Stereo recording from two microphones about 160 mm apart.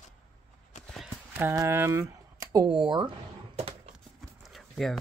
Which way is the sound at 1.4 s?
20° right (ahead or behind).